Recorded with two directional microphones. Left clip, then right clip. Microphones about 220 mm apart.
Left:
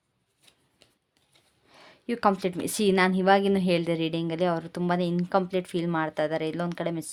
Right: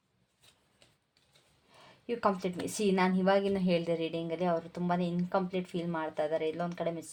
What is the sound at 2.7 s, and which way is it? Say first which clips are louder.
A woman's voice: left 6 dB; 45° left (ahead or behind).